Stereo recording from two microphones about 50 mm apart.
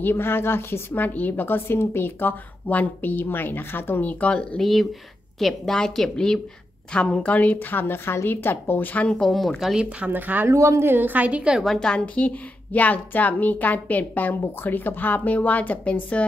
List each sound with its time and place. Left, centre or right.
0.0 s a woman's voice: left
0.9 s a woman's voice: left
4.1 s a woman's voice: left
4.6 s a woman's voice: centre; by 7.5 s left
7.5 s a woman's voice: left
9.0 s a woman's voice: centre
9.3 s speech: centre
9.8 s speech: right
10.1 s a woman's voice: right
10.5 s speech: right
10.9 s a woman's voice: right
11.8 s a woman's voice: centre
12.2 s a woman's voice: left